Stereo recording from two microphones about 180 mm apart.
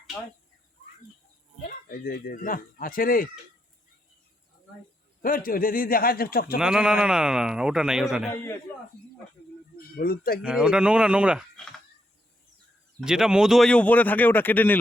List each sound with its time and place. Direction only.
1.9 s a man's voice: 55° left (ahead or behind)
5.2 s a man's voice: 50° left (ahead or behind)
6.6 s a man's voice: 5° right (ahead or behind)
9.9 s speech: 55° left (ahead or behind)
10.4 s a man's voice: 5° right (ahead or behind)
13.1 s speech: 5° right (ahead or behind)